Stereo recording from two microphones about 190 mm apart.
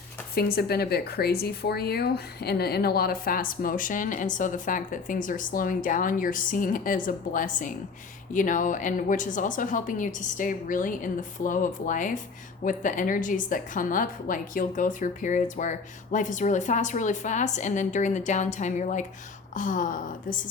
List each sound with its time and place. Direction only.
0.3 s a woman's voice: 55° left (ahead or behind)